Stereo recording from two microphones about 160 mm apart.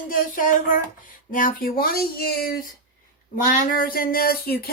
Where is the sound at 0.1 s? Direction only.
55° left (ahead or behind); by 2.6 s 70° left (ahead or behind).